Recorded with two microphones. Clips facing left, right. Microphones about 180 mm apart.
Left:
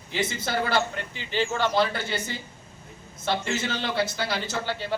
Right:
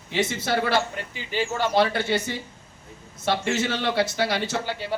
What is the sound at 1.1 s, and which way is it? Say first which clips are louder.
Speech: even; 10° right (ahead or behind).